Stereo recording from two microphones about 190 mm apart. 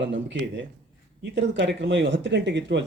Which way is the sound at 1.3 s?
70° right (ahead or behind).